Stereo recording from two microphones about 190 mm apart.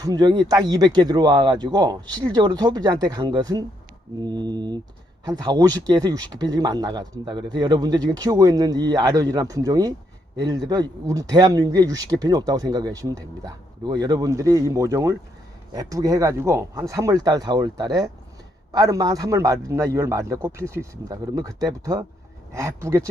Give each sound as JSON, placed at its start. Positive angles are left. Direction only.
{"t": 0.0, "sound": "a man's voice", "side_deg": -20}